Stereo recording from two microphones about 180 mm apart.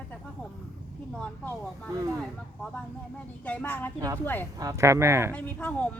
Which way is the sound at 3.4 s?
10° left (ahead or behind).